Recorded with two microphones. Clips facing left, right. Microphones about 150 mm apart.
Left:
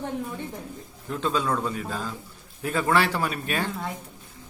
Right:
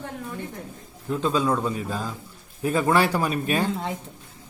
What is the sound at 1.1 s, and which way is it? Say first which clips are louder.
A woman's voice: right 3 dB; 10° right (ahead or behind).